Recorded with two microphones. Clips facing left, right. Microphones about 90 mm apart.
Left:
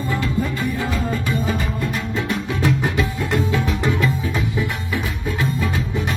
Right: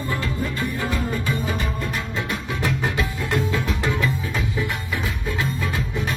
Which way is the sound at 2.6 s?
15° left (ahead or behind).